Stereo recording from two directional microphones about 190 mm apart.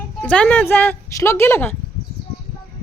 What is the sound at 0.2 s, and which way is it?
Speech, 5° left (ahead or behind).